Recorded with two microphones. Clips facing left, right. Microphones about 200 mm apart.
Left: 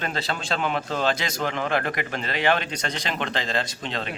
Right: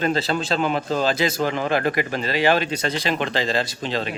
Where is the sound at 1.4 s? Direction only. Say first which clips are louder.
Right 4 dB; 35° right (ahead or behind).